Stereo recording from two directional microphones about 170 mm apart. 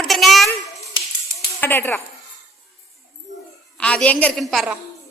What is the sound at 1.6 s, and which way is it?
Speech, 15° left (ahead or behind).